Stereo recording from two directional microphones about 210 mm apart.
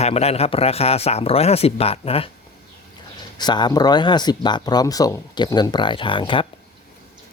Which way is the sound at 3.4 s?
20° left (ahead or behind).